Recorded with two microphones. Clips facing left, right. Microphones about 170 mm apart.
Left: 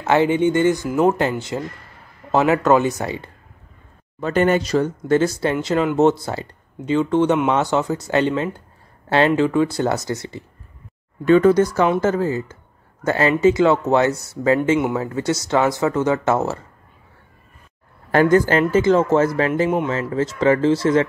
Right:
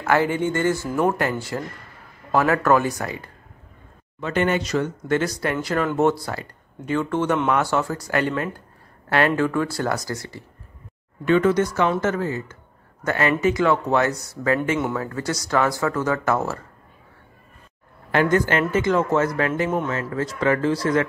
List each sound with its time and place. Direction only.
0.0 s a man's voice: 20° left (ahead or behind)
4.2 s speech: 40° left (ahead or behind); by 10.4 s 20° left (ahead or behind)
11.2 s speech: 35° left (ahead or behind)
18.1 s speech: 35° left (ahead or behind)